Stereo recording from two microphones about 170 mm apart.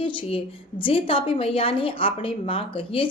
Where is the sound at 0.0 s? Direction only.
30° left (ahead or behind).